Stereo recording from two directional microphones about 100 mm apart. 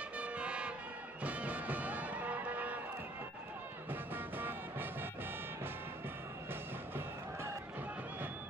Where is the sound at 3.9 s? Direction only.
20° right (ahead or behind).